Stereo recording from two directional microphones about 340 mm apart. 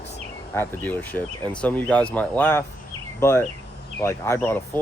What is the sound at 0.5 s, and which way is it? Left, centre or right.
Speech, centre.